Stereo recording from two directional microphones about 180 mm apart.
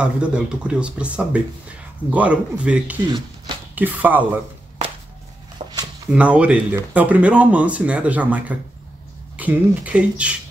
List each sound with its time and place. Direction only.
0.0 s speech: 5° right (ahead or behind)
3.0 s speech: 25° right (ahead or behind)
3.7 s speech: 10° right (ahead or behind)
5.6 s a sound: 30° right (ahead or behind)
6.0 s speech: 5° right (ahead or behind)